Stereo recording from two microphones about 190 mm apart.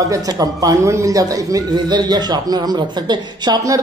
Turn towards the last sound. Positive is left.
turn(degrees=-20)  # may be behind; listen again after turning